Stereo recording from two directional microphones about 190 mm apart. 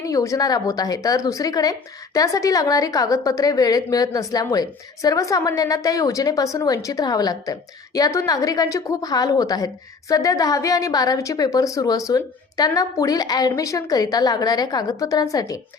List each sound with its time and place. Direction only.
0.0 s a woman's voice: 15° left (ahead or behind)